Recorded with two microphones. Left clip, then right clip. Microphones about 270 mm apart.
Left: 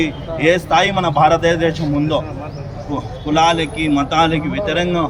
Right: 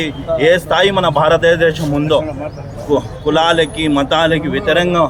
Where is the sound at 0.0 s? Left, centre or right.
Centre.